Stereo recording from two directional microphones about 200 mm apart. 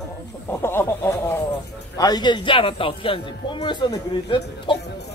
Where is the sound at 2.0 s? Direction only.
20° left (ahead or behind).